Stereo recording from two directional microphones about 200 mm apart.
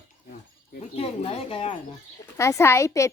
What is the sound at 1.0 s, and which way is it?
Speech, 30° left (ahead or behind).